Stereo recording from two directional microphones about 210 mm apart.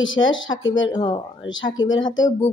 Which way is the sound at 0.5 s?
20° left (ahead or behind).